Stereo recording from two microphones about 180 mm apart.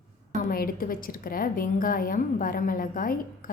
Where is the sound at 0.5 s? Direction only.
55° left (ahead or behind).